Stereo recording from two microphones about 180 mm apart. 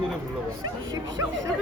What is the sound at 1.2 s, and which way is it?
Speech, 15° right (ahead or behind).